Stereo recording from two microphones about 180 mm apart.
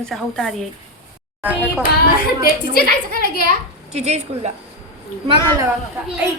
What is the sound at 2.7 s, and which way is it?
Speech, 55° left (ahead or behind).